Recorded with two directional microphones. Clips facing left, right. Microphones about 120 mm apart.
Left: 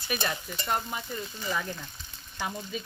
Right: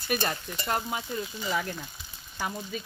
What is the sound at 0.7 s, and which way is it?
Frying, 90° right.